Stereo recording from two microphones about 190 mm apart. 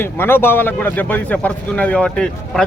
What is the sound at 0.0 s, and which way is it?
Speech, 10° left (ahead or behind).